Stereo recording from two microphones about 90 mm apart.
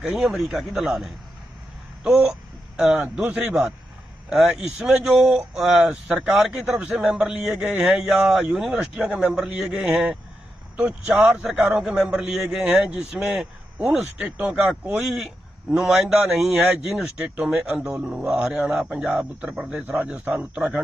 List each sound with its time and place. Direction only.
0.0 s speech: 5° right (ahead or behind)
11.8 s speech: 5° right (ahead or behind)